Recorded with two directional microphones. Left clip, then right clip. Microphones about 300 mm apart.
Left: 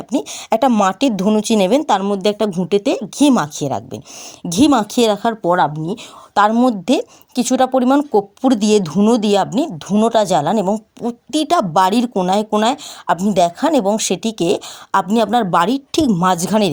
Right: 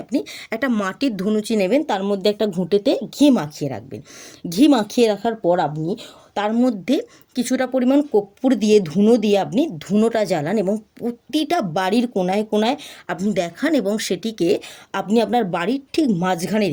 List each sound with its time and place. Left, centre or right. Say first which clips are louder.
0.1 s speech: left 7 dB; left